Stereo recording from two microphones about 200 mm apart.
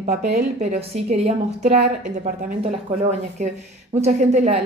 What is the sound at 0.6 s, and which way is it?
A woman's voice, 35° right (ahead or behind).